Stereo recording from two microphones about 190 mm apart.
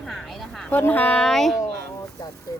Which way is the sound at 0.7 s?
10° left (ahead or behind).